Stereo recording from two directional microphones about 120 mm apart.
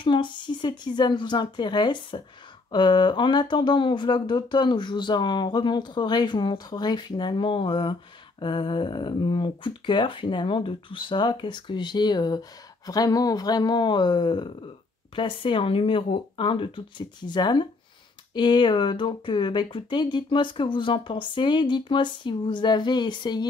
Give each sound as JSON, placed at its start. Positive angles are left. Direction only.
{"t": 0.0, "sound": "speech", "side_deg": 40}